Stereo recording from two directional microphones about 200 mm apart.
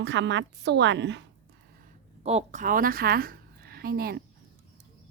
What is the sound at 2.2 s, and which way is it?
A woman's voice, 35° right (ahead or behind).